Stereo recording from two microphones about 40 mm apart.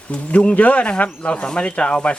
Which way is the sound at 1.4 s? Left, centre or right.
Left.